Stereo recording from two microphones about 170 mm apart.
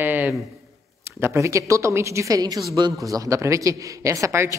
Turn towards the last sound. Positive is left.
turn(degrees=-15)  # may be behind; listen again after turning